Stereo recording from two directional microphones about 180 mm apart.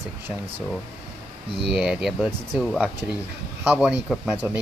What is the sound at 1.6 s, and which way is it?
Speech, 5° right (ahead or behind).